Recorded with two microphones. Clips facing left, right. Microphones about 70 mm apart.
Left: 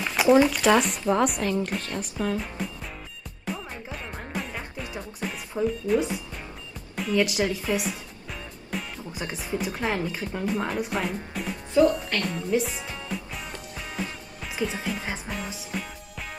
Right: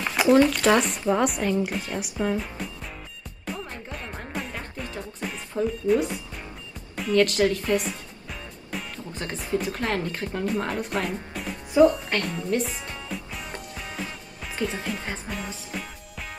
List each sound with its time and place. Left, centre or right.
0.0 s a sound: centre
0.4 s speech: centre
2.3 s music: centre
8.9 s speech: centre
12.3 s music: centre